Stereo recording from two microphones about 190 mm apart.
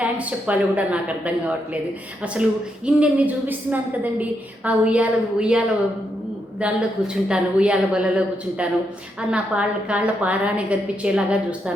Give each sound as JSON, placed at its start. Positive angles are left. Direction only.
{"t": 0.0, "sound": "a woman's voice", "side_deg": -5}
{"t": 2.8, "sound": "a woman's voice", "side_deg": -5}